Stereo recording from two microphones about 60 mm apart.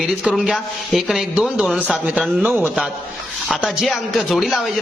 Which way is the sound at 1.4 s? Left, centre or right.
Centre.